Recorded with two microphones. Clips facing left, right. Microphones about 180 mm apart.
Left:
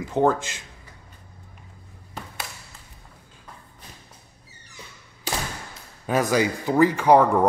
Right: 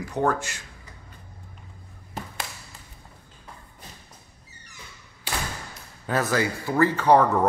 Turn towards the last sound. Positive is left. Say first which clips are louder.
# left 2 dB
turn(degrees=10)  # may be behind; listen again after turning